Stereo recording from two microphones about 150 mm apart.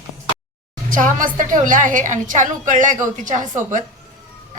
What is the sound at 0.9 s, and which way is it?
A woman's voice, 60° right (ahead or behind).